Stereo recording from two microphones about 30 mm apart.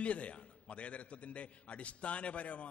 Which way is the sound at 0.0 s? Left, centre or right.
Left.